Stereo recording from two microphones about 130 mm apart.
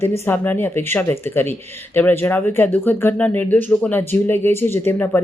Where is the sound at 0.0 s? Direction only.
15° left (ahead or behind).